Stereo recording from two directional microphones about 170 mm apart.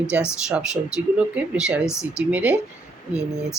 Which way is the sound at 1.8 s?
15° left (ahead or behind).